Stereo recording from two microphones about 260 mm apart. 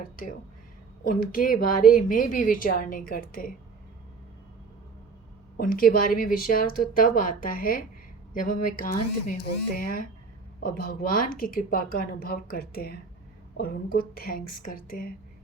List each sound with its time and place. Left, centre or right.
0.0 s a woman's voice: left
5.5 s a woman's voice: left